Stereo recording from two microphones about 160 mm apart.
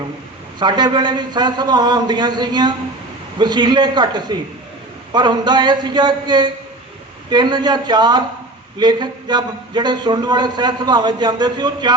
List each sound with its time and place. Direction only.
0.6 s a man's voice: 25° right (ahead or behind)